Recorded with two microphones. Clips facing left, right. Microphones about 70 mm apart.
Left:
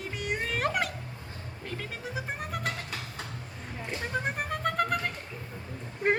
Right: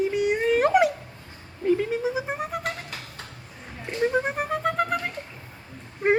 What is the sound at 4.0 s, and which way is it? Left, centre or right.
Music, centre.